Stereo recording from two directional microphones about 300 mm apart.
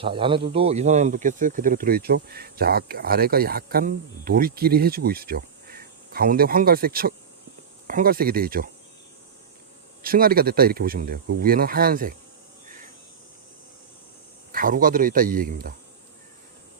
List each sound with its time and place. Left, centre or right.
0.0 s speech: centre
10.0 s speech: right
14.5 s speech: right